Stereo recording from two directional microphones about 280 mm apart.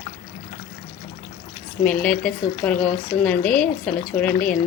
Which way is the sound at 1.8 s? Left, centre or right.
Centre.